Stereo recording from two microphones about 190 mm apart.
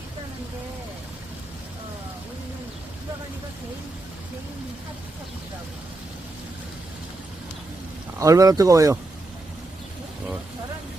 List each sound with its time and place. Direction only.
8.2 s speech: 15° right (ahead or behind)